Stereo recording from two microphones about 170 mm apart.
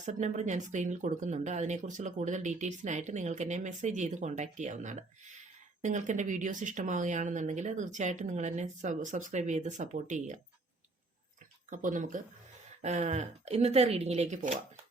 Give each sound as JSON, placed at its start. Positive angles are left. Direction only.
{"t": 0.0, "sound": "speech", "side_deg": -45}
{"t": 11.7, "sound": "speech", "side_deg": -50}